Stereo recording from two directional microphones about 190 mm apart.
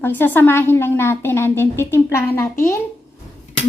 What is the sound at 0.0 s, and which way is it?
A woman's voice, 10° left (ahead or behind).